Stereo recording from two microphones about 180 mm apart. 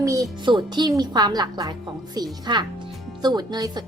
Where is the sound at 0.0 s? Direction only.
20° right (ahead or behind).